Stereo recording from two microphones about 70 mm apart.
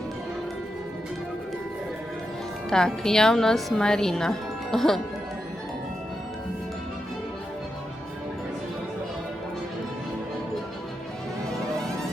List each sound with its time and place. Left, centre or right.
2.6 s a woman's voice: centre